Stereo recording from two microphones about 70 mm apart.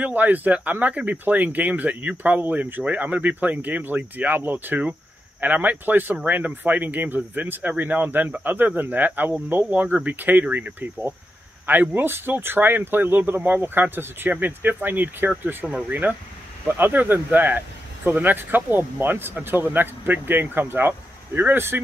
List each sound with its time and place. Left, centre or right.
0.0 s speech: right